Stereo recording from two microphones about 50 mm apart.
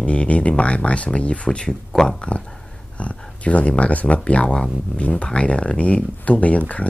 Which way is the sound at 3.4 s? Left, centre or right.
Left.